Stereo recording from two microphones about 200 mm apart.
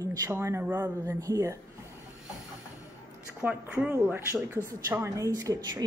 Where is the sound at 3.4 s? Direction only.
5° right (ahead or behind).